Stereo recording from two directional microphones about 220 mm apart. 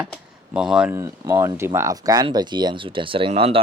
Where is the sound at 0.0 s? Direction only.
5° right (ahead or behind).